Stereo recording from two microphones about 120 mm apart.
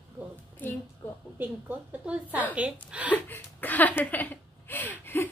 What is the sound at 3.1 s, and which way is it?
A woman's voice, 15° left (ahead or behind).